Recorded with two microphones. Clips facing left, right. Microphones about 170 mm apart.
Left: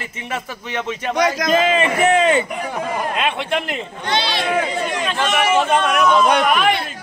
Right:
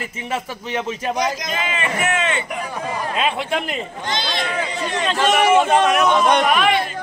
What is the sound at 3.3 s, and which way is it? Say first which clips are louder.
Speech: left 1 dB; centre (ahead or behind).